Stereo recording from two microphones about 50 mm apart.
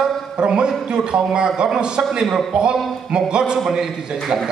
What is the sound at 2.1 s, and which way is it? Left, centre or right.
Speech, centre.